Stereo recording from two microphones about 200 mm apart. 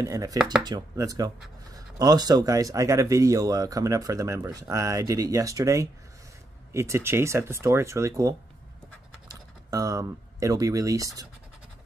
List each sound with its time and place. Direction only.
0.0 s speech: 15° right (ahead or behind)
9.7 s speech: 15° right (ahead or behind)